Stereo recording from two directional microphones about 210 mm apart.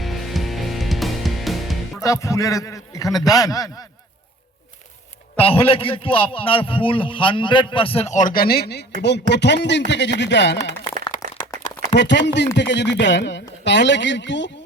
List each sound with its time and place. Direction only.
0.0 s music: centre (ahead or behind)
2.0 s a man's voice: 15° left (ahead or behind)
5.4 s a man's voice: 25° left (ahead or behind); by 10.6 s 55° left (ahead or behind)
11.9 s speech: 55° left (ahead or behind)